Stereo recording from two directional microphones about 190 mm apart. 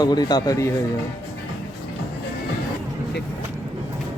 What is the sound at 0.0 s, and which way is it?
Speech, 20° left (ahead or behind).